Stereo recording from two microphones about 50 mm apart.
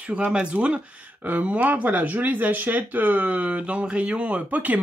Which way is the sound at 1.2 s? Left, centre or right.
Right.